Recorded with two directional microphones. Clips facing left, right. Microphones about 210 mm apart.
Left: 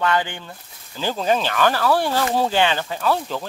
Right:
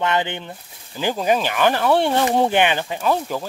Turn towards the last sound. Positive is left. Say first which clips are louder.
# right 1 dB
turn(degrees=-10)  # may be behind; listen again after turning